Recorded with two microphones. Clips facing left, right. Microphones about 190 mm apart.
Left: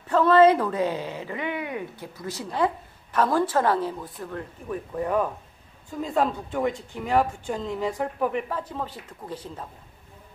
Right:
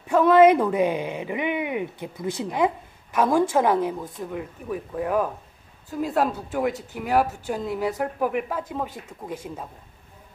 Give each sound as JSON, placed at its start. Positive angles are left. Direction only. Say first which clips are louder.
{"t": 0.0, "sound": "a woman's voice", "louder": "right 2 dB", "side_deg": -10}